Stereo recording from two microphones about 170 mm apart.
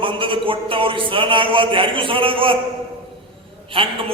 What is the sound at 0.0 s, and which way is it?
A man's voice, 30° right (ahead or behind).